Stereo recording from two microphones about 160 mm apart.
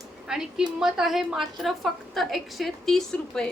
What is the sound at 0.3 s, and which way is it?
A woman's voice, 5° right (ahead or behind).